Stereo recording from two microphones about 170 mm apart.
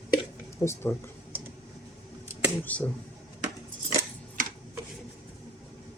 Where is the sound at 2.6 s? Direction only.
10° left (ahead or behind).